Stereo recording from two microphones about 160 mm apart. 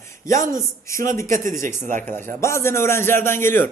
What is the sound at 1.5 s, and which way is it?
Speech, 55° right (ahead or behind).